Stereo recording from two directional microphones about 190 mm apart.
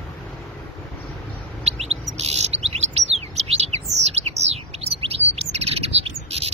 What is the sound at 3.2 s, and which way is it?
Bird, 35° right (ahead or behind).